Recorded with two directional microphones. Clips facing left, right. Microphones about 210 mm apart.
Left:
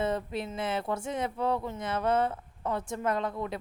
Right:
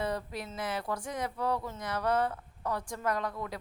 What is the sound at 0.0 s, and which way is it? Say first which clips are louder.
Speech: left 4 dB; 25° left (ahead or behind).